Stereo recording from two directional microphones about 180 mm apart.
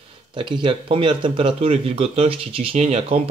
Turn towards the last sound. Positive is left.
turn(degrees=-35)  # may be behind; listen again after turning